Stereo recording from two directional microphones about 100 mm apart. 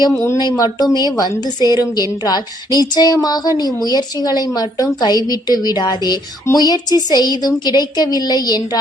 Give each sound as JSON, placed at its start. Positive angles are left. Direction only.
{"t": 0.3, "sound": "a woman's voice", "side_deg": 40}